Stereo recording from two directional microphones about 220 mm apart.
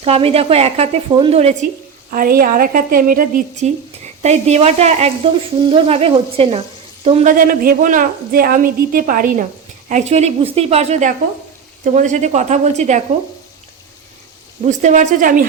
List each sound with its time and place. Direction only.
0.0 s speech: 25° right (ahead or behind)
2.1 s a woman's voice: 40° right (ahead or behind)
14.6 s a woman's voice: 35° right (ahead or behind)